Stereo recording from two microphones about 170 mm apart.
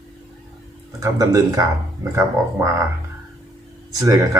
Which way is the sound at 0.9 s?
20° right (ahead or behind).